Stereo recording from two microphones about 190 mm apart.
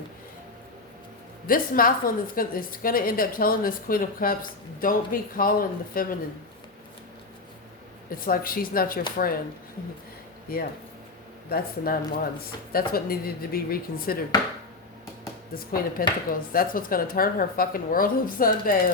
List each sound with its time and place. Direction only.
1.5 s a woman's voice: 50° left (ahead or behind)
8.1 s a woman's voice: 50° left (ahead or behind)
11.4 s a woman's voice: 50° left (ahead or behind)
15.5 s a woman's voice: 50° left (ahead or behind)